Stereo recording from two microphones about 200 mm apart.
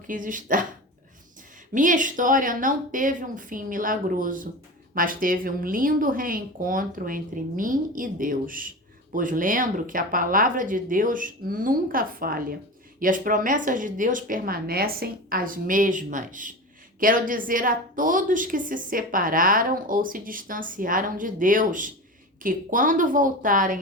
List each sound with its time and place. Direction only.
0.1 s a woman's voice: 40° right (ahead or behind)
1.7 s a woman's voice: 40° right (ahead or behind)